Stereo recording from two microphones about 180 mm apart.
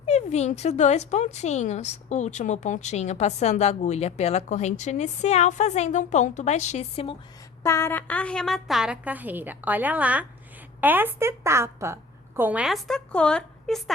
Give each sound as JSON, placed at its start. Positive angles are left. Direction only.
{"t": 0.0, "sound": "speech", "side_deg": 40}
{"t": 7.6, "sound": "a woman's voice", "side_deg": 15}